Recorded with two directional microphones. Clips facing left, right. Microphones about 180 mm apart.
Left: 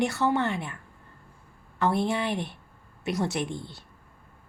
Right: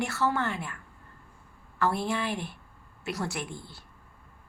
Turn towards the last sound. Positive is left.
turn(degrees=20)  # may be behind; listen again after turning